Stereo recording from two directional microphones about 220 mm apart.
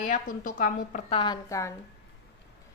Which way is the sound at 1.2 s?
15° left (ahead or behind).